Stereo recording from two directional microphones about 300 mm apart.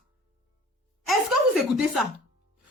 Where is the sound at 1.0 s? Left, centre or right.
Centre.